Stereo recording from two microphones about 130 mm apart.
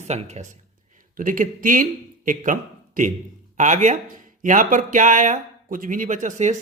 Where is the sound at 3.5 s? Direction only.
70° right (ahead or behind).